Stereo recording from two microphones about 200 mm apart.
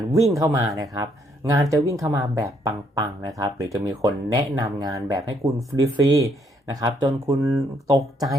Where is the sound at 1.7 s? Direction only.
15° right (ahead or behind).